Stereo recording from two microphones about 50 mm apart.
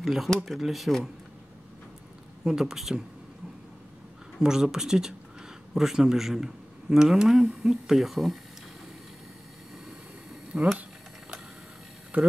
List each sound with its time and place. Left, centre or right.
0.0 s speech: centre
2.4 s a man's voice: centre
4.4 s a man's voice: centre
10.5 s speech: centre
12.1 s speech: right